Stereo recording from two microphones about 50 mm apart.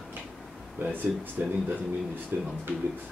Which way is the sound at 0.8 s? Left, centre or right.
Right.